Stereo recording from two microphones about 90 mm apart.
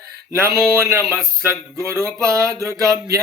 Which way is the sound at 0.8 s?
30° right (ahead or behind).